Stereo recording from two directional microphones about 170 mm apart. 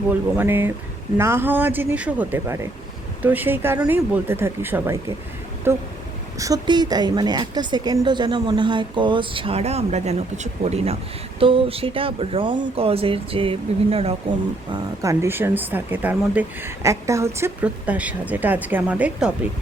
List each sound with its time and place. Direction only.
0.1 s a woman's voice: 10° right (ahead or behind); by 14.2 s 35° right (ahead or behind)
14.7 s speech: 20° right (ahead or behind)